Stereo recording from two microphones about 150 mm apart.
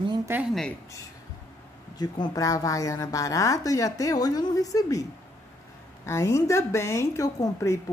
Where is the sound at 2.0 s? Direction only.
30° left (ahead or behind).